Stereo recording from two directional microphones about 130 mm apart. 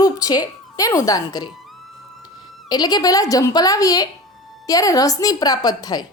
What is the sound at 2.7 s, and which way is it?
A woman's voice, 30° left (ahead or behind).